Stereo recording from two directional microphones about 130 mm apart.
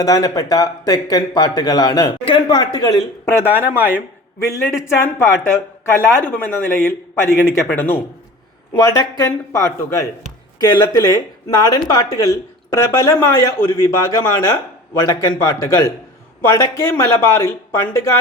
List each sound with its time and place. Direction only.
0.0 s a woman's voice: 25° left (ahead or behind)
3.2 s speech: 20° left (ahead or behind)
4.5 s speech: 20° left (ahead or behind)